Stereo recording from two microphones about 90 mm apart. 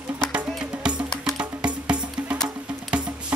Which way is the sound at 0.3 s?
10° right (ahead or behind).